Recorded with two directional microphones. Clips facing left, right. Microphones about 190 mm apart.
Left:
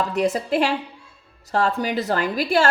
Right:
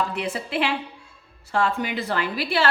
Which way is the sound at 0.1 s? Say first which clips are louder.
Left 7 dB; 40° left (ahead or behind).